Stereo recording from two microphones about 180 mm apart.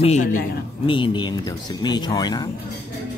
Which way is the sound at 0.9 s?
30° left (ahead or behind).